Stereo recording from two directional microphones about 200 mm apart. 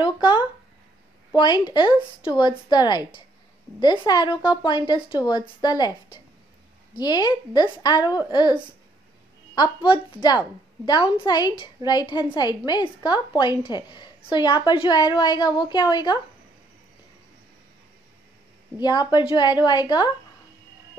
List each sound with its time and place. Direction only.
0.0 s a sound: 25° left (ahead or behind)
1.3 s a woman's voice: 25° left (ahead or behind)
9.6 s a woman's voice: 20° left (ahead or behind)
18.8 s a woman's voice: 20° left (ahead or behind)